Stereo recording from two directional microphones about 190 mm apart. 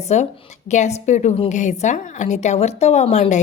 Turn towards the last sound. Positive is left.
turn(degrees=40)  # may be behind; listen again after turning